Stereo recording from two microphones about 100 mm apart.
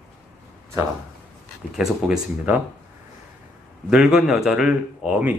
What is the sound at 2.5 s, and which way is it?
Speech, 20° right (ahead or behind).